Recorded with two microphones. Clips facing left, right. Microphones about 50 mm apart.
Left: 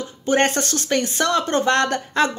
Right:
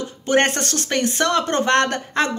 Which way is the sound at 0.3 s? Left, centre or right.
Right.